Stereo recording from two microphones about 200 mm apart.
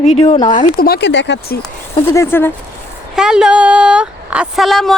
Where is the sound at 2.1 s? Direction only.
10° left (ahead or behind).